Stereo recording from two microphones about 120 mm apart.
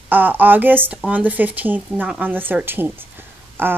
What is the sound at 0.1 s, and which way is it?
Speech, 15° right (ahead or behind).